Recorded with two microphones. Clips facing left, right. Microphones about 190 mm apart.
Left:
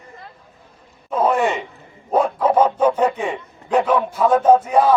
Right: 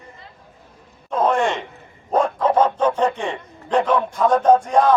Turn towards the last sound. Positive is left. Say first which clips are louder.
# left 1 dB
turn(degrees=5)  # may be behind; listen again after turning